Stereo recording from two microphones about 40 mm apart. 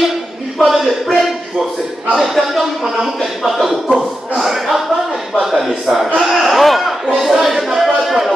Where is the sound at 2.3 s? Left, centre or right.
Centre.